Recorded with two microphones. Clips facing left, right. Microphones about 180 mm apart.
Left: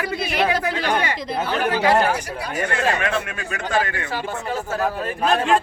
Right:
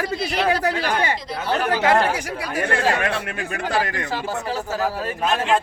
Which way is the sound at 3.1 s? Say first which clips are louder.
Left 1 dB; 35° right (ahead or behind).